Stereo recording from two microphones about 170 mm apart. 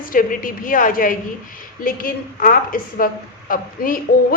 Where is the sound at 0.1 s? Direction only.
55° left (ahead or behind).